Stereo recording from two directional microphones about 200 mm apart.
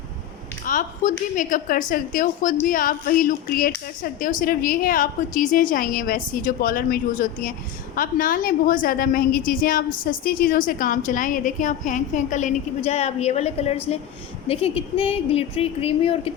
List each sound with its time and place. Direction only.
0.6 s a woman's voice: 40° left (ahead or behind)